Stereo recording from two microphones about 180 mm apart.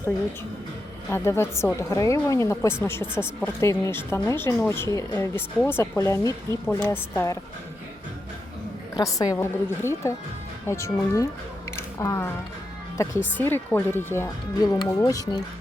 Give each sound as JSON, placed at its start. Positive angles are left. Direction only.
{"t": 1.1, "sound": "speech", "side_deg": 15}
{"t": 9.0, "sound": "speech", "side_deg": 20}
{"t": 11.8, "sound": "a sound", "side_deg": 15}
{"t": 13.3, "sound": "speech", "side_deg": 10}